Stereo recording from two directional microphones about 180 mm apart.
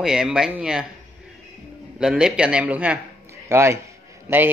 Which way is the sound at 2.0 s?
5° right (ahead or behind).